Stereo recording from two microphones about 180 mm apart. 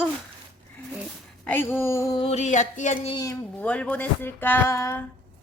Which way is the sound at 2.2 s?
40° left (ahead or behind).